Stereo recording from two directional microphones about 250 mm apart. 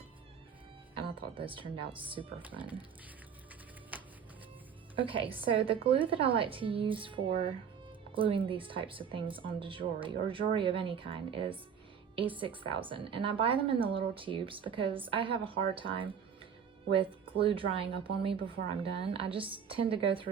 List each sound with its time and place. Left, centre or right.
1.4 s speech: centre
2.4 s speech: centre
3.9 s music: centre
4.9 s a woman's voice: centre